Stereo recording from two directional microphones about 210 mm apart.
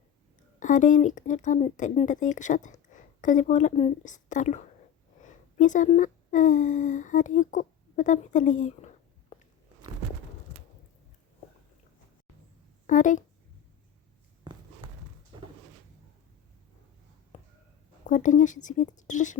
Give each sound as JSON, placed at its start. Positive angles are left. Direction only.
{"t": 0.6, "sound": "speech", "side_deg": 35}
{"t": 12.9, "sound": "speech", "side_deg": 35}
{"t": 15.3, "sound": "a sound", "side_deg": -20}
{"t": 18.0, "sound": "speech", "side_deg": 35}